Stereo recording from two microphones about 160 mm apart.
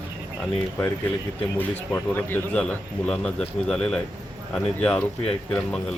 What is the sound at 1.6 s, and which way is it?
Speech, 15° left (ahead or behind).